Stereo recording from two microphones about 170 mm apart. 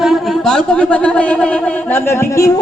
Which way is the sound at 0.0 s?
Centre (ahead or behind).